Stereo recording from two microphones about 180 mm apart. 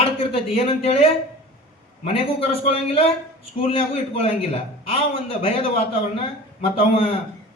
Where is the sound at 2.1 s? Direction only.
35° left (ahead or behind).